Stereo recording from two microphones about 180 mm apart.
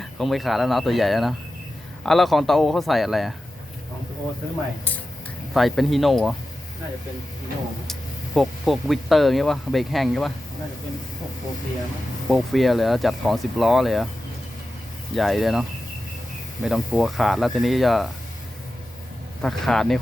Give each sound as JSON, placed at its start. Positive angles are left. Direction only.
{"t": 0.0, "sound": "speech", "side_deg": 0}
{"t": 5.5, "sound": "speech", "side_deg": 0}
{"t": 7.9, "sound": "speech", "side_deg": 0}
{"t": 12.3, "sound": "speech", "side_deg": 0}
{"t": 15.1, "sound": "speech", "side_deg": 0}
{"t": 16.6, "sound": "speech", "side_deg": 0}
{"t": 19.4, "sound": "speech", "side_deg": 0}